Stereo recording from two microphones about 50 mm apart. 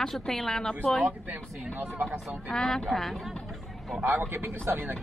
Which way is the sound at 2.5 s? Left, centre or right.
Centre.